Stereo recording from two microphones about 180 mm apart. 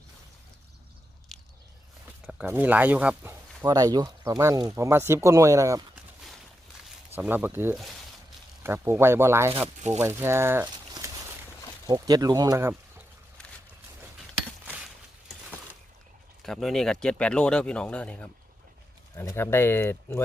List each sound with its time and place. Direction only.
1.3 s a sound: centre (ahead or behind)
2.2 s speech: 10° right (ahead or behind)
7.2 s speech: 10° right (ahead or behind)
10.0 s a sound: 15° right (ahead or behind)
11.9 s speech: 20° right (ahead or behind)
16.4 s speech: centre (ahead or behind)